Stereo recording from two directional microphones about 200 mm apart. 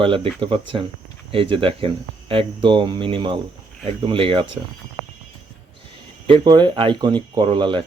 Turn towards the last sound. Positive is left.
turn(degrees=-25)  # may be behind; listen again after turning